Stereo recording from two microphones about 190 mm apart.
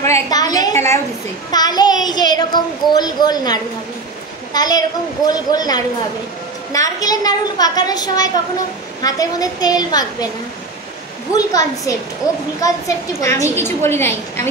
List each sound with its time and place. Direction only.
0.0 s a sound: 15° left (ahead or behind)
1.5 s speech: 20° left (ahead or behind)
11.3 s a woman's voice: 20° left (ahead or behind)